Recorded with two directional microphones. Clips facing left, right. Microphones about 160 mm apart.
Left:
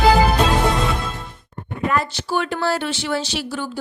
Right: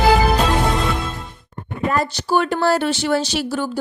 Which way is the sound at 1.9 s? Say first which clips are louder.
Right 3 dB; 40° right (ahead or behind).